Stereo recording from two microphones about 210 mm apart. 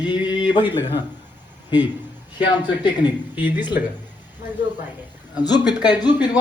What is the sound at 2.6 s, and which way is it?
Speech, 20° left (ahead or behind).